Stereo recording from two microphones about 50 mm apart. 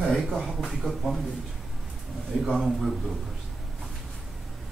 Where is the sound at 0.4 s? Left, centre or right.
Centre.